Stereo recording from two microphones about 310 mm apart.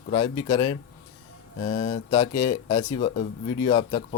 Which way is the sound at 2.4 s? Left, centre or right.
Centre.